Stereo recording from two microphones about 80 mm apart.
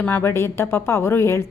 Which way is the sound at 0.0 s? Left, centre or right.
Left.